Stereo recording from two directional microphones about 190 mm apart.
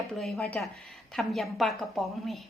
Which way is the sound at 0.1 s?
Centre (ahead or behind).